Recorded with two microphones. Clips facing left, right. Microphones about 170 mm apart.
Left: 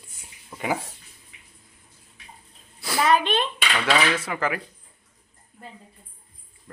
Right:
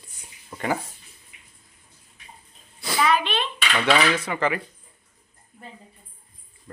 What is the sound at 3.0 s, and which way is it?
Speech, 45° left (ahead or behind).